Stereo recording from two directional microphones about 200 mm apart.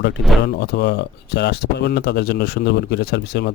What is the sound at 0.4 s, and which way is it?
A man's voice, 55° left (ahead or behind).